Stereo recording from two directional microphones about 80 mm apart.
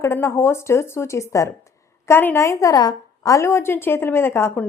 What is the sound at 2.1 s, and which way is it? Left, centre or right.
Speech, left.